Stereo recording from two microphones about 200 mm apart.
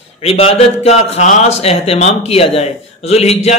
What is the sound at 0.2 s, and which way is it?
A man's voice, 30° left (ahead or behind).